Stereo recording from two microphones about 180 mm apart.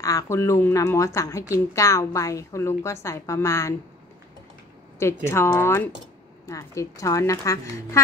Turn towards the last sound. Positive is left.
turn(degrees=15)  # may be behind; listen again after turning